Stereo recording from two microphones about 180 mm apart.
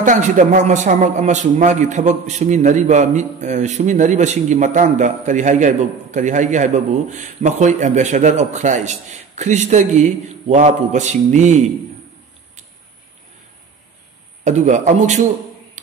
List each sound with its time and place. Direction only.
0.0 s a man's voice: 45° right (ahead or behind)
14.4 s a man's voice: 45° right (ahead or behind)